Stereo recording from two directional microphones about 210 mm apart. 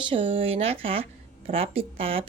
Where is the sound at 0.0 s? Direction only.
25° right (ahead or behind).